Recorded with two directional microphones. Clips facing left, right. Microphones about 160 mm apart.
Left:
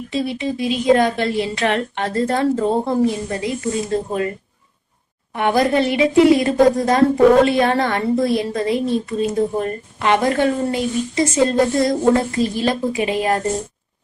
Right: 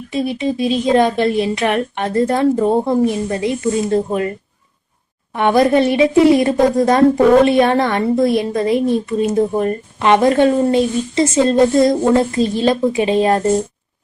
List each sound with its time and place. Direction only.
0.1 s a woman's voice: 20° right (ahead or behind)
5.4 s a woman's voice: 25° right (ahead or behind)